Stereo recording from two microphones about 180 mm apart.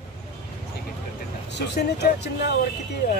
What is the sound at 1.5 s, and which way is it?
Speech, 65° left (ahead or behind).